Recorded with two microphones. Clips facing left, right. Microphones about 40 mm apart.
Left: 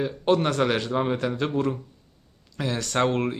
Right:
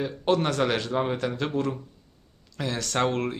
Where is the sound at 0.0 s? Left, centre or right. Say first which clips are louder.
Left 2 dB; centre.